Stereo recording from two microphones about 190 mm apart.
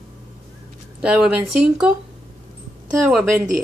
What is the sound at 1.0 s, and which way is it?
Speech, 5° right (ahead or behind).